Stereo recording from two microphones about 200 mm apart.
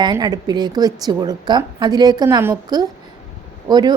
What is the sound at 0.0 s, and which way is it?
A woman's voice, 20° right (ahead or behind).